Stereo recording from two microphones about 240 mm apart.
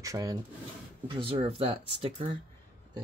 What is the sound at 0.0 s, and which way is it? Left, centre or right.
Speech, centre.